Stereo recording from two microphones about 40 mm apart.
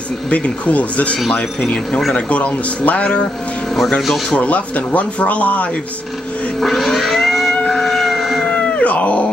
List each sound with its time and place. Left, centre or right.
0.3 s speech: left
4.4 s speech: left
6.6 s cat: centre
8.5 s cat: left
8.9 s dog: left